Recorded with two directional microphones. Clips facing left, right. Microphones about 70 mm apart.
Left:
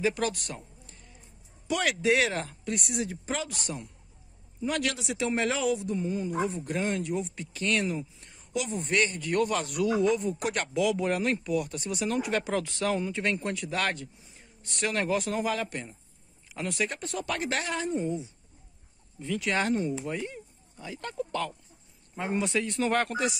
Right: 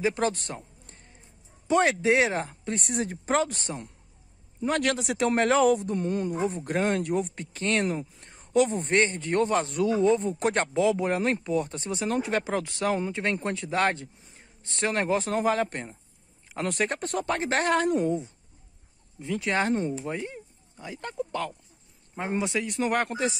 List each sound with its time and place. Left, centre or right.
0.0 s a sound: right
1.7 s a man's voice: right
6.5 s speech: right
8.9 s a man's voice: right
17.3 s a man's voice: right
17.6 s a woman's voice: right
19.1 s speech: right